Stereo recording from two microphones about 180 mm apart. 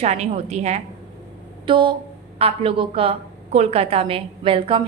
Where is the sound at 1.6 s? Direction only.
25° right (ahead or behind).